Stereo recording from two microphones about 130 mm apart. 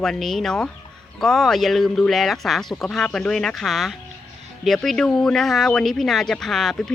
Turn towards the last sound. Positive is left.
turn(degrees=5)  # may be behind; listen again after turning